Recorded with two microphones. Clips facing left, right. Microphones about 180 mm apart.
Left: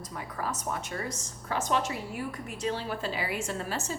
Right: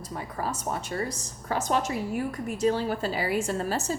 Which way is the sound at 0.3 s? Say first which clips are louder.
Right 2 dB; 30° right (ahead or behind).